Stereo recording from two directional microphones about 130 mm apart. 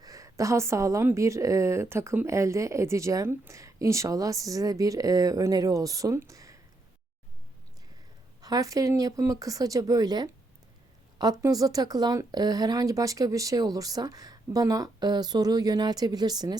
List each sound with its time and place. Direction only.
0.0 s a woman's voice: 25° right (ahead or behind)
8.4 s a woman's voice: 30° right (ahead or behind)